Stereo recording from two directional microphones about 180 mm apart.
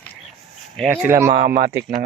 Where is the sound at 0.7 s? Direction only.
10° right (ahead or behind).